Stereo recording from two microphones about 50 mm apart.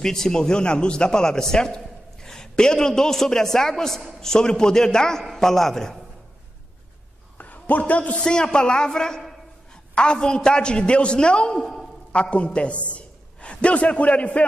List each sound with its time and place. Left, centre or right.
0.0 s a man's voice: centre
7.3 s a sound: left
8.2 s a man's voice: centre
12.1 s a man's voice: left